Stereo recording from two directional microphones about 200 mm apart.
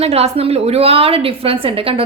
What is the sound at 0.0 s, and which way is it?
A woman's voice, 30° right (ahead or behind).